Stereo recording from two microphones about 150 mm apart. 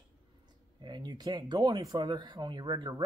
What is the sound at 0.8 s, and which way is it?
Speech, 30° right (ahead or behind).